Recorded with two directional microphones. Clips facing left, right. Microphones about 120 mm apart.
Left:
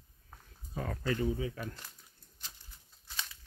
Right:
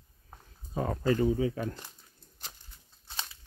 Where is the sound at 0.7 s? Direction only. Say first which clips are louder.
Right 7 dB; 30° right (ahead or behind).